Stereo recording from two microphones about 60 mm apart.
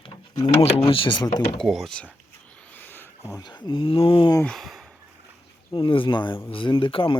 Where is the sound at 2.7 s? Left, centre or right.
Left.